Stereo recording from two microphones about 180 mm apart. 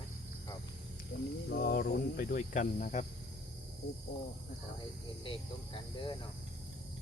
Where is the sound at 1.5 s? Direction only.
60° left (ahead or behind).